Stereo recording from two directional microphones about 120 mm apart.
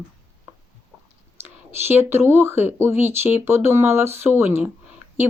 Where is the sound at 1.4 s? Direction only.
20° right (ahead or behind).